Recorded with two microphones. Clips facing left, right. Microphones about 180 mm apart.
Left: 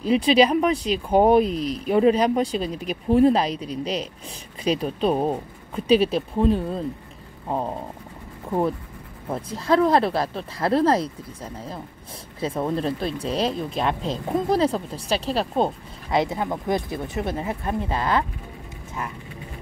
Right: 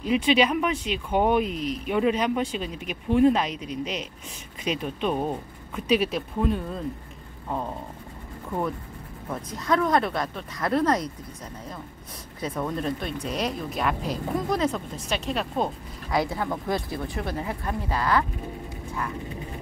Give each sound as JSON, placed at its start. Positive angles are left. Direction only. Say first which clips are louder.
{"t": 0.0, "sound": "speech", "louder": "left 4 dB", "side_deg": 35}